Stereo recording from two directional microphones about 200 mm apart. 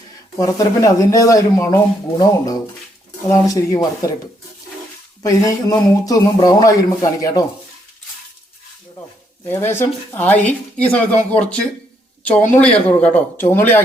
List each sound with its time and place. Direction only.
0.3 s speech: 15° left (ahead or behind)
5.2 s speech: 15° left (ahead or behind)
9.5 s speech: 10° left (ahead or behind)